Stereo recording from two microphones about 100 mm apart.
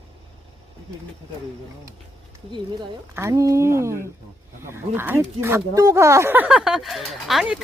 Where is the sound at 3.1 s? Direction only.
30° right (ahead or behind).